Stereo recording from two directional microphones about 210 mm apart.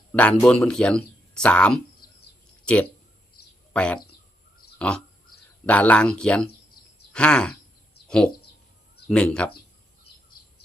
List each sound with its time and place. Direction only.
0.1 s speech: 5° left (ahead or behind)
8.0 s a sound: 5° left (ahead or behind)
9.0 s speech: 5° left (ahead or behind)